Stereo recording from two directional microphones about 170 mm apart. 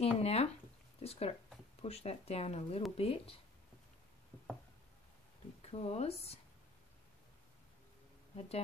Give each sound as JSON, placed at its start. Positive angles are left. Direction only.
{"t": 0.0, "sound": "speech", "side_deg": 35}
{"t": 5.6, "sound": "speech", "side_deg": 35}
{"t": 8.4, "sound": "speech", "side_deg": 35}